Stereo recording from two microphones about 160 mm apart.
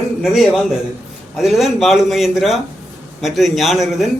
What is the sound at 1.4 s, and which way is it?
A man's voice, centre (ahead or behind).